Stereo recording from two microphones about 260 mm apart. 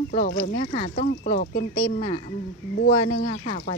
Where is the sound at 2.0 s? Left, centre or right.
Left.